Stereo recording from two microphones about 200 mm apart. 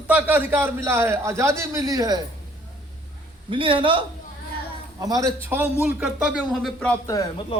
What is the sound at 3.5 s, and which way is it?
A man's voice, 25° right (ahead or behind).